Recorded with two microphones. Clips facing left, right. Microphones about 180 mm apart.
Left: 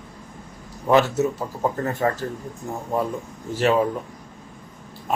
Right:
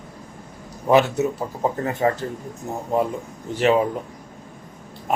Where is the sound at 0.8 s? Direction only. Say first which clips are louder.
Right 1 dB; 15° right (ahead or behind).